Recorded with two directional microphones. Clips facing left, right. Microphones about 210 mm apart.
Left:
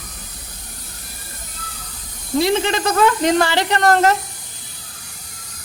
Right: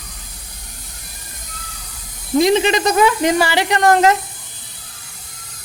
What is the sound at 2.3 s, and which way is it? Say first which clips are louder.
Speech: right 4 dB; 15° right (ahead or behind).